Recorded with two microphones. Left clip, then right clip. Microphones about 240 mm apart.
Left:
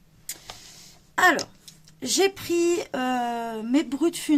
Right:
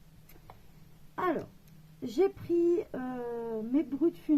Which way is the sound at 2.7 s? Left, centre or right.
Left.